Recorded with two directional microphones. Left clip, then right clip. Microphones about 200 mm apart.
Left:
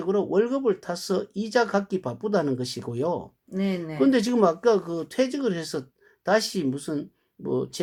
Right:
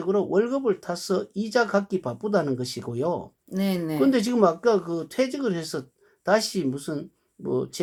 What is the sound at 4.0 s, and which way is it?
Speech, centre (ahead or behind).